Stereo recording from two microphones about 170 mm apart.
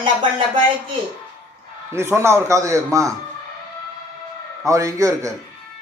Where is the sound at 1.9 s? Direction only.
15° right (ahead or behind).